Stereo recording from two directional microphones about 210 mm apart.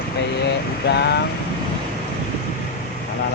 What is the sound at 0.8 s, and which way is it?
Vehicle, 55° left (ahead or behind).